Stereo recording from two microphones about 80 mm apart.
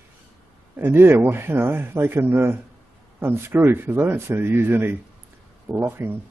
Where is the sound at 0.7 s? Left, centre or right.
Right.